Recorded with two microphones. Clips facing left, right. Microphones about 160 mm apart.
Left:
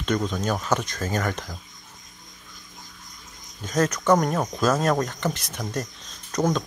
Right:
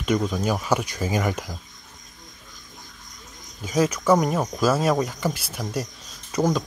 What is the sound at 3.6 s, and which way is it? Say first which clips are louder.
Speech: right 1 dB; 5° right (ahead or behind).